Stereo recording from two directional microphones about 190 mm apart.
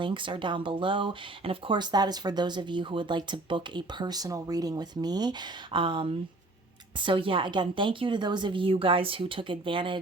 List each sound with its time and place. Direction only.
0.0 s speech: 25° right (ahead or behind)